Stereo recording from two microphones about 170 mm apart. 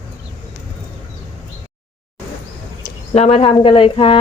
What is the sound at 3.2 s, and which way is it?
Speech, 35° left (ahead or behind).